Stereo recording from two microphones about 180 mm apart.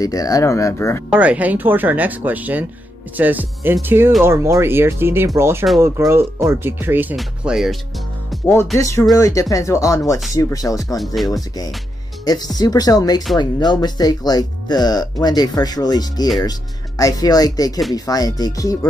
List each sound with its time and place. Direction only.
0.0 s speech: 20° left (ahead or behind)
1.1 s speech: 5° right (ahead or behind)
8.7 s speech: 15° left (ahead or behind)
11.1 s speech: centre (ahead or behind)
12.3 s speech: 20° left (ahead or behind)